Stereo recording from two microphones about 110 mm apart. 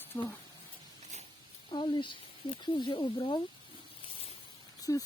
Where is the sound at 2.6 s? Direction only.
45° left (ahead or behind).